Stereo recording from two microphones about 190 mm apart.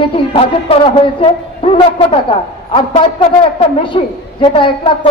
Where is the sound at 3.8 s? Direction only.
25° left (ahead or behind).